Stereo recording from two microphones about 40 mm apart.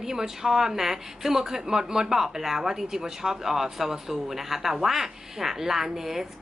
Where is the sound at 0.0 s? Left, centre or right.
Centre.